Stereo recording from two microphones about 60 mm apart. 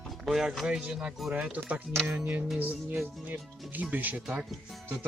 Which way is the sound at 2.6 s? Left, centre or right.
Right.